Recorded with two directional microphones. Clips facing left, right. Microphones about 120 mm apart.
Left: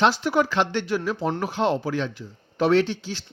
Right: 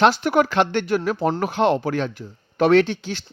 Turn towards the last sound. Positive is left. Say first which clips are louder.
# right 4 dB
turn(degrees=-60)  # may be behind; listen again after turning